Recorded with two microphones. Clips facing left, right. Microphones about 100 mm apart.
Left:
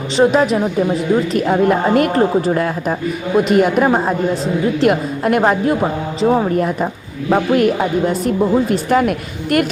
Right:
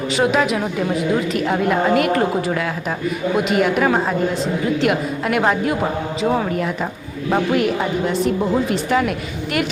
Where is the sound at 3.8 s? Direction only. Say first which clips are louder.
Left 3 dB; 30° left (ahead or behind).